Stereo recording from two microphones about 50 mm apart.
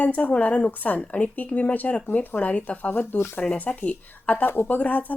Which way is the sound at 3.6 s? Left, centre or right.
Left.